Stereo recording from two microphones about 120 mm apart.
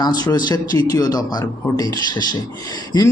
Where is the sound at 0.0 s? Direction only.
35° left (ahead or behind).